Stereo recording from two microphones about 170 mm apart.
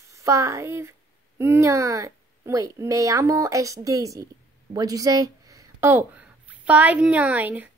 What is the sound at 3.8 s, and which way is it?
A woman's voice, 20° right (ahead or behind).